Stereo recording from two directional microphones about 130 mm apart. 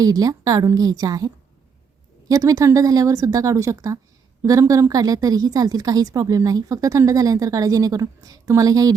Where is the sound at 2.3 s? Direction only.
25° right (ahead or behind).